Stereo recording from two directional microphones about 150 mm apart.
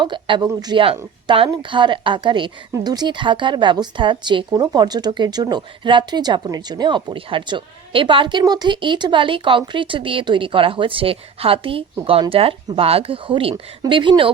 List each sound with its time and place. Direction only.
0.0 s speech: 30° right (ahead or behind)